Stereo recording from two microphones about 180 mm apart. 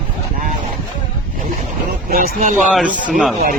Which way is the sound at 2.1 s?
55° right (ahead or behind).